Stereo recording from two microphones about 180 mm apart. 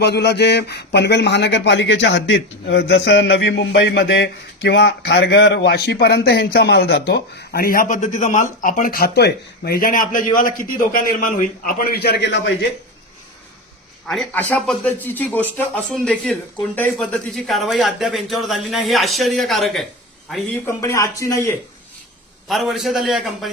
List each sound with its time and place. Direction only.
0.0 s speech: 65° left (ahead or behind)
14.1 s speech: 5° left (ahead or behind)
20.7 s speech: 15° left (ahead or behind)
22.4 s speech: centre (ahead or behind)